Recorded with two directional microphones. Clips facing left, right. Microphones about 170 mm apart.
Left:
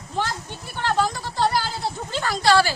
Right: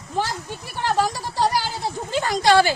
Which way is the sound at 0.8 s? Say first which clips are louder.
Right 1 dB; 10° right (ahead or behind).